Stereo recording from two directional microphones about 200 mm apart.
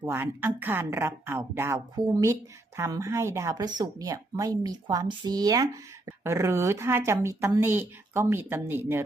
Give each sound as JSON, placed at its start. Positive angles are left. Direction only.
{"t": 0.0, "sound": "speech", "side_deg": -10}